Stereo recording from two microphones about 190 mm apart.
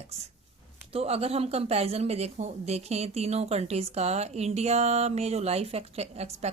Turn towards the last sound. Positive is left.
turn(degrees=-35)  # may be behind; listen again after turning